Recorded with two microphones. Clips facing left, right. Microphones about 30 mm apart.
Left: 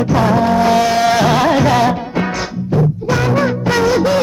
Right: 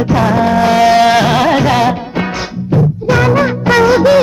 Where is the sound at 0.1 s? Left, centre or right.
Right.